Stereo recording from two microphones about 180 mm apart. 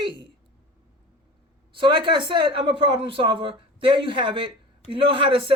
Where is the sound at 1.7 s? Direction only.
25° right (ahead or behind).